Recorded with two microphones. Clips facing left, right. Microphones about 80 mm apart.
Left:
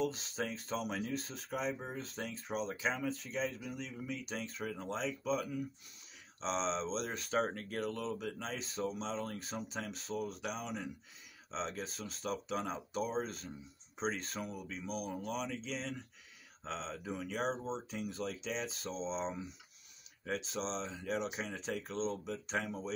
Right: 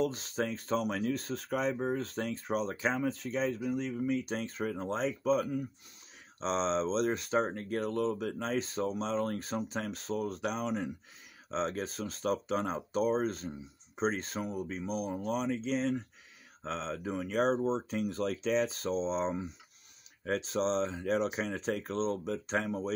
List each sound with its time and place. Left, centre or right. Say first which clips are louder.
0.0 s speech: right 5 dB; right
7.2 s speech: right 4 dB; right